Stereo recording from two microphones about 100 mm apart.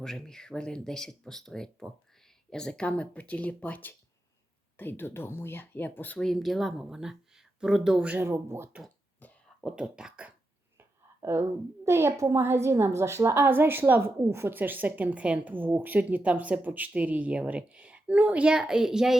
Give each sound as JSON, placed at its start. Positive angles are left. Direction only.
{"t": 0.0, "sound": "speech", "side_deg": 5}
{"t": 6.1, "sound": "speech", "side_deg": 5}
{"t": 8.3, "sound": "speech", "side_deg": -25}
{"t": 9.6, "sound": "a woman's voice", "side_deg": -5}
{"t": 10.8, "sound": "a sound", "side_deg": -25}
{"t": 11.9, "sound": "a woman's voice", "side_deg": -25}